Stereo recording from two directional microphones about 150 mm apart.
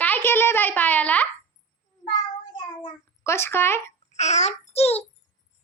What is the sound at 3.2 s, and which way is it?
Speech, 15° left (ahead or behind).